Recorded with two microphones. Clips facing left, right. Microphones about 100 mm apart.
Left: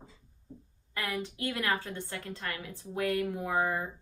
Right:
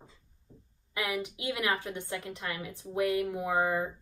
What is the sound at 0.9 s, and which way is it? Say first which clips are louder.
Speech: right 2 dB; 15° right (ahead or behind).